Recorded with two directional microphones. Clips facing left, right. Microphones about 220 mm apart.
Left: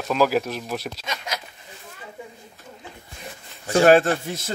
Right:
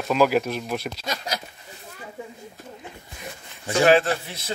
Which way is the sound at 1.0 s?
35° right (ahead or behind).